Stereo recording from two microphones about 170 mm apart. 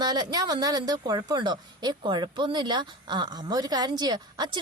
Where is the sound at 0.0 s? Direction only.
25° right (ahead or behind).